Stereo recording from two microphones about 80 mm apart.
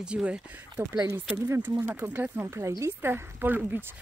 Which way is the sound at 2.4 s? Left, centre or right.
Right.